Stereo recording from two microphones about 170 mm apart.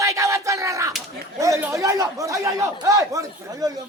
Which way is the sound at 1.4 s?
15° right (ahead or behind).